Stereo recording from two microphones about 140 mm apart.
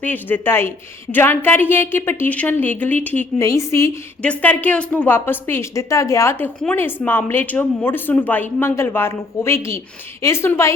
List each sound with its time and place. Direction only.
0.0 s speech: 15° left (ahead or behind)
4.2 s a woman's voice: 10° left (ahead or behind)